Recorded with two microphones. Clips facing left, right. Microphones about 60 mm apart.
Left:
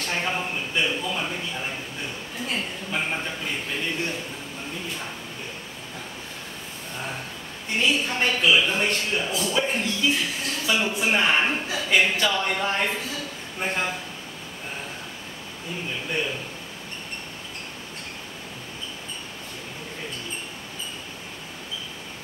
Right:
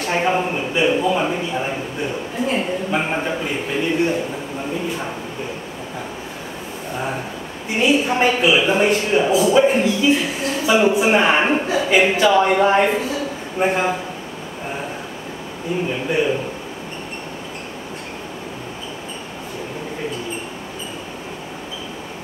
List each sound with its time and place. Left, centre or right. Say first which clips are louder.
0.0 s a sound: right 8 dB; centre
7.7 s a woman's voice: right 7 dB; centre
15.9 s a woman's voice: right 8 dB; centre